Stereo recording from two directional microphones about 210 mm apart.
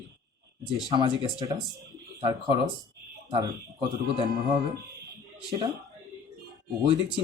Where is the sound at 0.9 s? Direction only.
20° right (ahead or behind).